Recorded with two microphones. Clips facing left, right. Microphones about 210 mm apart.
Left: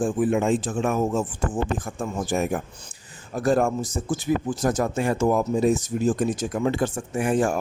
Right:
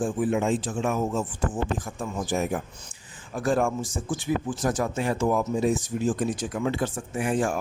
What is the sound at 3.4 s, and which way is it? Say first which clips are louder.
Speech: left 3 dB; 40° left (ahead or behind).